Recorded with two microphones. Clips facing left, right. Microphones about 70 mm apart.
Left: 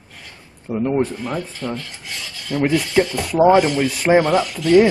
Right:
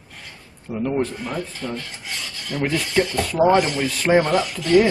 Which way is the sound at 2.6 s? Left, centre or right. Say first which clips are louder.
Left 4 dB; centre.